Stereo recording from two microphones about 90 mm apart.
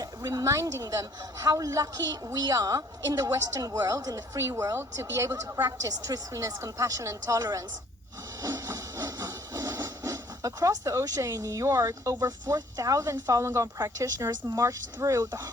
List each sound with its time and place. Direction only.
0.0 s a woman's voice: 45° right (ahead or behind)
8.4 s a sound: 35° right (ahead or behind)
12.2 s a woman's voice: 40° right (ahead or behind)